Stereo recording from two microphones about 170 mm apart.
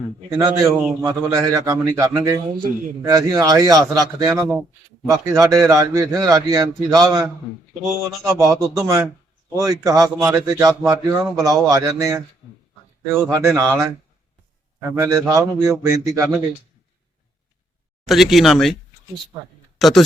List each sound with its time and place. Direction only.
0.3 s a man's voice: 20° right (ahead or behind)
13.2 s a man's voice: 15° right (ahead or behind)
14.8 s a man's voice: 15° right (ahead or behind)
18.0 s speech: centre (ahead or behind)
19.8 s speech: centre (ahead or behind)